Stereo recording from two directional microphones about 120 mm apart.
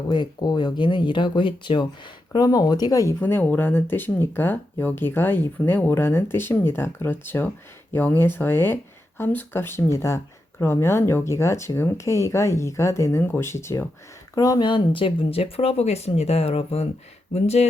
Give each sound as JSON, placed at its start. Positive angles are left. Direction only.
{"t": 0.1, "sound": "speech", "side_deg": 40}
{"t": 3.2, "sound": "speech", "side_deg": 15}